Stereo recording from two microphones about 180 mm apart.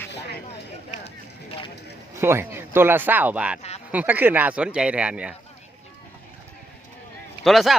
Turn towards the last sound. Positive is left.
turn(degrees=0)  # may be behind; listen again after turning